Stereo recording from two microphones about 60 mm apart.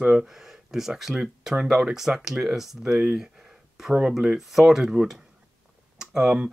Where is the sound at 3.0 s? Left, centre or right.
Centre.